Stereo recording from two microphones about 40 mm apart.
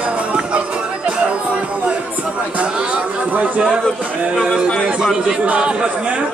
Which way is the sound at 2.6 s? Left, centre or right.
Right.